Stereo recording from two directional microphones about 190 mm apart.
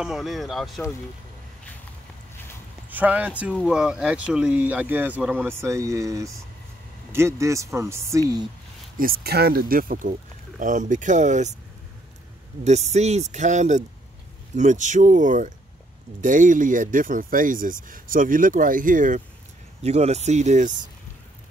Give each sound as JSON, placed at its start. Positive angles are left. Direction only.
{"t": 0.0, "sound": "speech", "side_deg": 0}
{"t": 2.9, "sound": "speech", "side_deg": -10}
{"t": 8.9, "sound": "speech", "side_deg": -50}
{"t": 12.6, "sound": "speech", "side_deg": -35}